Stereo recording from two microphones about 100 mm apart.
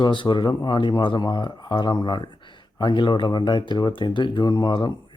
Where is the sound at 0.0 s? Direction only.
50° left (ahead or behind).